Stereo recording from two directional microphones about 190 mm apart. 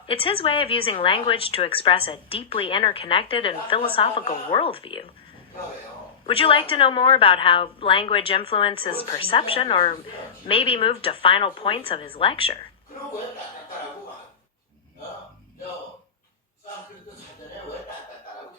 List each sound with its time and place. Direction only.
0.1 s a woman's voice: 30° left (ahead or behind)
6.2 s a woman's voice: 30° left (ahead or behind)